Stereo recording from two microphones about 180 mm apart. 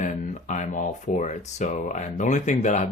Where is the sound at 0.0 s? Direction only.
40° left (ahead or behind).